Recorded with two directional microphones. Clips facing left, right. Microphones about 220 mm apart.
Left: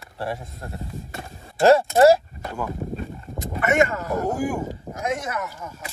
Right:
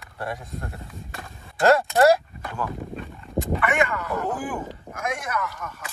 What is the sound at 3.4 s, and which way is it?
Speech, 45° left (ahead or behind).